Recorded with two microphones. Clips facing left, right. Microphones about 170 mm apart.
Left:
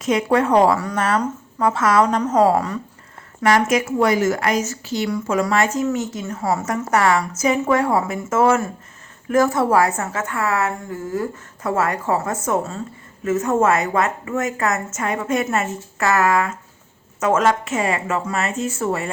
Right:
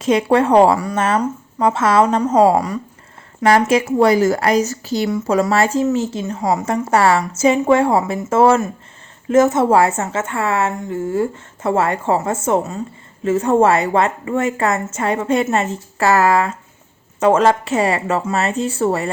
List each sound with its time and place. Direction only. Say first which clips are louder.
0.0 s a woman's voice: right 3 dB; 30° right (ahead or behind)
1.2 s speech: right 3 dB; 15° right (ahead or behind)
1.7 s a woman's voice: right 2 dB; 25° right (ahead or behind)
2.2 s a woman's voice: right 3 dB; 10° right (ahead or behind)
3.9 s a woman's voice: right 5 dB; 35° right (ahead or behind)
6.2 s a woman's voice: right 3 dB; 20° right (ahead or behind)
6.9 s a woman's voice: right 3 dB; 35° right (ahead or behind)